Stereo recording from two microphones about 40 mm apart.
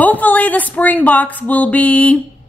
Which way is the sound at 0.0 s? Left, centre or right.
Left.